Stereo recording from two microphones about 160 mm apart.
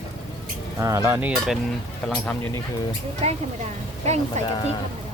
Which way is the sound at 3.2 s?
40° right (ahead or behind).